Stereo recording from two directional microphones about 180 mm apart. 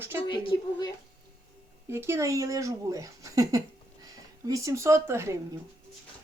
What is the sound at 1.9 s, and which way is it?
Speech, 15° right (ahead or behind).